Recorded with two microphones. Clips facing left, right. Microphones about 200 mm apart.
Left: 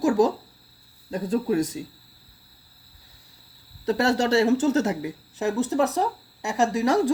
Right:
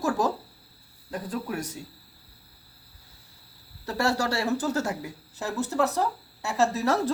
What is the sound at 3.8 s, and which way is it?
Speech, 20° left (ahead or behind).